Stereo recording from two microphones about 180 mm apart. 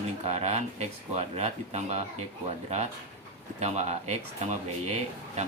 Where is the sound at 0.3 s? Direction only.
35° right (ahead or behind).